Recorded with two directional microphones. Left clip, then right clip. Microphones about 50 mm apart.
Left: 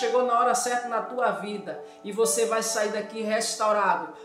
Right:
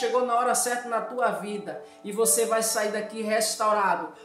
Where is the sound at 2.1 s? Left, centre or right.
Right.